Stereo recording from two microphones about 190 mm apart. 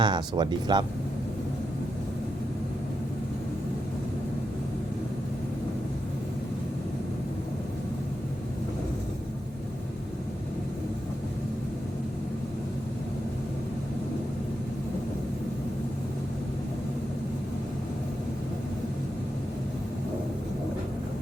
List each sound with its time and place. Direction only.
0.0 s speech: 25° right (ahead or behind)